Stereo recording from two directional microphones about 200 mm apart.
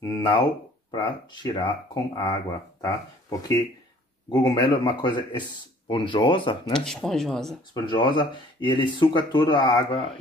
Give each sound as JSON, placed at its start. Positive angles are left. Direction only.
{"t": 0.0, "sound": "speech", "side_deg": 20}
{"t": 6.7, "sound": "speech", "side_deg": 5}
{"t": 7.7, "sound": "speech", "side_deg": 20}